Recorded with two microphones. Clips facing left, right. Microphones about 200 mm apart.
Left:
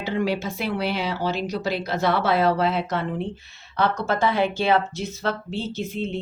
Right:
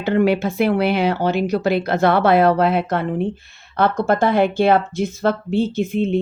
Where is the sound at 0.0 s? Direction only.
60° right (ahead or behind).